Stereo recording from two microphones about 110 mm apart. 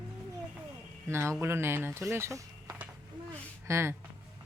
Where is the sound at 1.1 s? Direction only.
25° right (ahead or behind).